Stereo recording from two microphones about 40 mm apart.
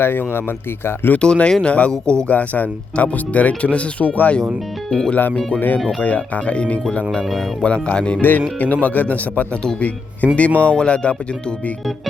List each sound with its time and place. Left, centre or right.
0.0 s speech: left
1.2 s speech: left
4.9 s speech: centre
5.1 s speech: left
6.0 s speech: left
8.2 s speech: left
10.6 s speech: left